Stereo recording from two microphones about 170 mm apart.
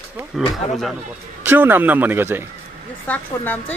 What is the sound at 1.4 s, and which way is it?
Speech, 10° right (ahead or behind).